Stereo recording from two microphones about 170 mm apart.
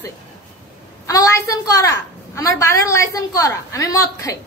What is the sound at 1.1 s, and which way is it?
A woman's voice, 20° left (ahead or behind).